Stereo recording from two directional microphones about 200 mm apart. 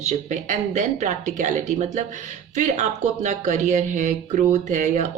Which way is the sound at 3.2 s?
35° right (ahead or behind).